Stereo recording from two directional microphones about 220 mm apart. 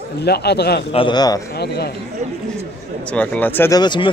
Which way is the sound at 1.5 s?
45° left (ahead or behind).